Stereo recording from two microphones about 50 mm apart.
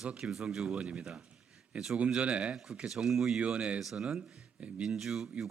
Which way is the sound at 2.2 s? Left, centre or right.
Right.